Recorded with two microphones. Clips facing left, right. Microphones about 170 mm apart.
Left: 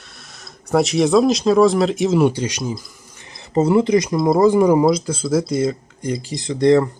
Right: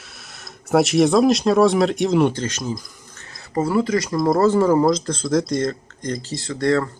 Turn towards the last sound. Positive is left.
turn(degrees=20)  # may be behind; listen again after turning